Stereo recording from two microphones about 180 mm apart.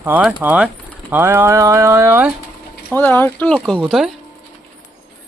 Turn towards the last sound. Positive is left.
turn(degrees=0)  # may be behind; listen again after turning